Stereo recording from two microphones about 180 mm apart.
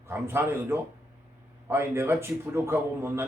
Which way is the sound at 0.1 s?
15° right (ahead or behind).